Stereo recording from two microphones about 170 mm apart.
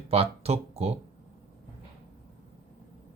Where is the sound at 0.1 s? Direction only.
35° right (ahead or behind).